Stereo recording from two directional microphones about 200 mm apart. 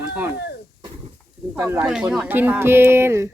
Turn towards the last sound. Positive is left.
turn(degrees=-15)  # may be behind; listen again after turning